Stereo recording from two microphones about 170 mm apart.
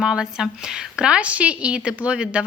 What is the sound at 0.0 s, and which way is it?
A woman's voice, 5° right (ahead or behind).